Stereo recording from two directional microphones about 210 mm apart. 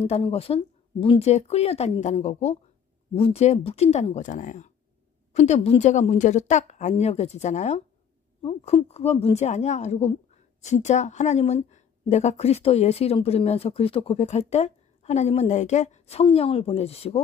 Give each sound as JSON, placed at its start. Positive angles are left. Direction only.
{"t": 0.0, "sound": "a woman's voice", "side_deg": 30}